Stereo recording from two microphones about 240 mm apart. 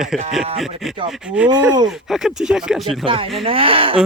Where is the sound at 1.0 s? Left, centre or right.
Centre.